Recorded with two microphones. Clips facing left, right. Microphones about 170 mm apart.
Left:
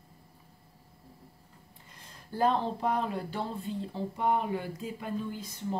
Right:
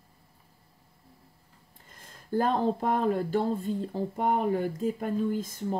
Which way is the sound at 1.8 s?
45° right (ahead or behind).